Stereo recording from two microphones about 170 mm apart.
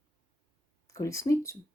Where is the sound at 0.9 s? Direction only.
20° left (ahead or behind).